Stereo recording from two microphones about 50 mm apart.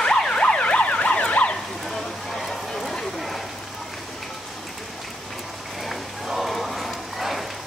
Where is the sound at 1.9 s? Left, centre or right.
Centre.